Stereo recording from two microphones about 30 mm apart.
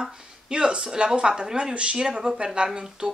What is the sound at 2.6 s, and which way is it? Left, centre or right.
Speech, right.